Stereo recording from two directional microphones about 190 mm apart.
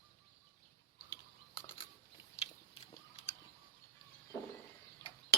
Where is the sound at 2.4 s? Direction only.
35° left (ahead or behind).